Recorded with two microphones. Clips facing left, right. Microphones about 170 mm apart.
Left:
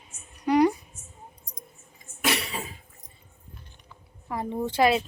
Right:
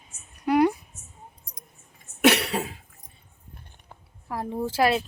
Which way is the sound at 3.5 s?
55° right (ahead or behind).